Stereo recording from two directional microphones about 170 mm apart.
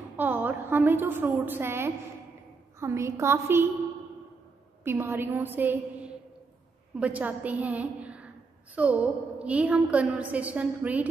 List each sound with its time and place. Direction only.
0.2 s a woman's voice: 10° right (ahead or behind)
4.8 s a woman's voice: 15° right (ahead or behind)